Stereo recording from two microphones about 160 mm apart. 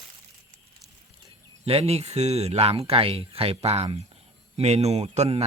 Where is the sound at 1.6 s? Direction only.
40° right (ahead or behind).